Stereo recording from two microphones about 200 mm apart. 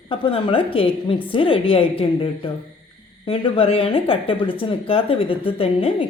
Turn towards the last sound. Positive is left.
turn(degrees=30)  # may be behind; listen again after turning